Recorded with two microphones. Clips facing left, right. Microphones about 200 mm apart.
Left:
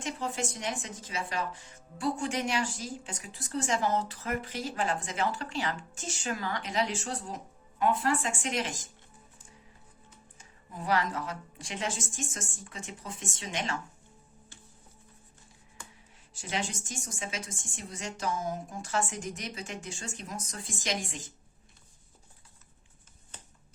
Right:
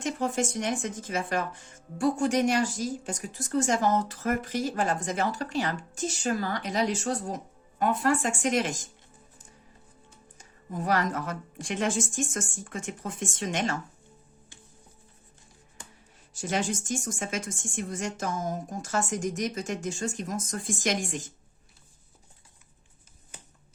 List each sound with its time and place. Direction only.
0.0 s speech: 45° right (ahead or behind)
10.3 s speech: 45° right (ahead or behind)
16.3 s speech: 45° right (ahead or behind)